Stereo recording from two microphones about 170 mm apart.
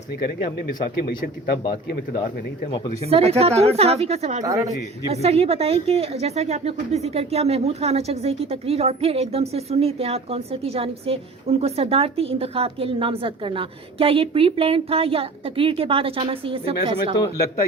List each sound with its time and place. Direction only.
2.9 s a woman's voice: 35° right (ahead or behind)
4.4 s speech: 20° right (ahead or behind)
5.1 s a woman's voice: 35° right (ahead or behind)
17.2 s speech: 20° left (ahead or behind)